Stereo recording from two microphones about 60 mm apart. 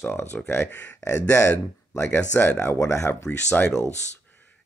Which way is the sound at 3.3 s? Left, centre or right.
Left.